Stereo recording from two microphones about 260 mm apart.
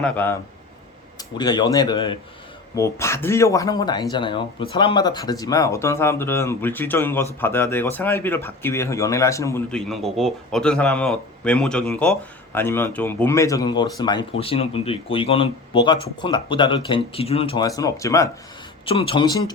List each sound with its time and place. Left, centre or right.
0.0 s speech: centre
1.4 s speech: centre